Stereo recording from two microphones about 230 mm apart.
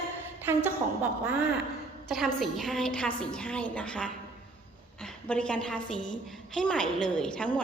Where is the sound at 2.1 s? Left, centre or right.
Centre.